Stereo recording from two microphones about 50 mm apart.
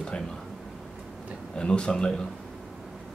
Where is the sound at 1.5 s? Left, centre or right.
Centre.